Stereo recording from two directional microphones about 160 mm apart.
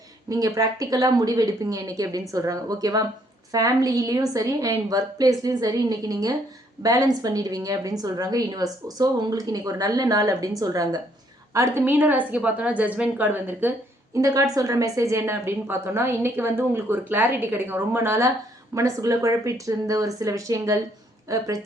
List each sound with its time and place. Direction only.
0.3 s a woman's voice: 20° right (ahead or behind)